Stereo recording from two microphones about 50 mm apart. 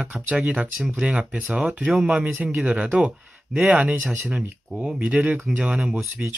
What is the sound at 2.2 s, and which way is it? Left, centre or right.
Speech, right.